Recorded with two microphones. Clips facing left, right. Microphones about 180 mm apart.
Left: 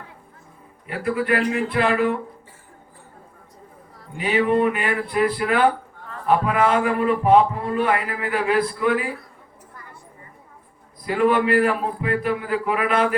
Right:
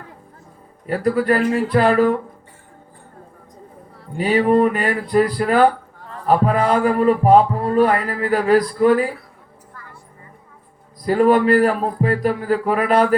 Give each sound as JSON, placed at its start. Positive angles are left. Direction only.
{"t": 0.9, "sound": "a man's voice", "side_deg": -40}
{"t": 4.2, "sound": "a man's voice", "side_deg": -40}
{"t": 11.0, "sound": "a man's voice", "side_deg": -40}